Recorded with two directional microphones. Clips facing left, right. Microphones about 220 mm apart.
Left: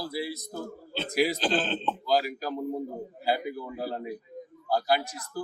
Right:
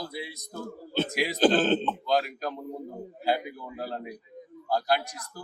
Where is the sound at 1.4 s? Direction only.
45° right (ahead or behind).